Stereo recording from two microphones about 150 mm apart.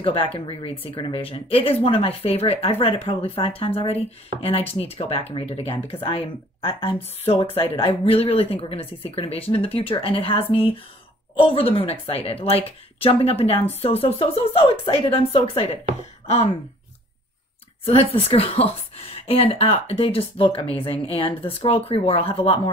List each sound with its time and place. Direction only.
0.0 s speech: 35° left (ahead or behind)
17.8 s speech: 40° left (ahead or behind)